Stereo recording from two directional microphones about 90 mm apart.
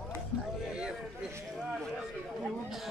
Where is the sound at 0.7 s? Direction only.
10° right (ahead or behind).